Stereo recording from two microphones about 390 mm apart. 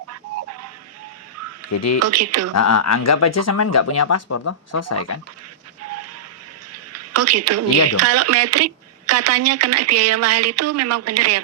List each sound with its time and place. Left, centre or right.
1.7 s speech: left
2.0 s speech: right
2.6 s speech: left
5.8 s a sound: right
7.9 s speech: right